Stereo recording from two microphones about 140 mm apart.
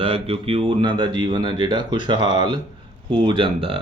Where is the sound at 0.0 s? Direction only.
40° right (ahead or behind).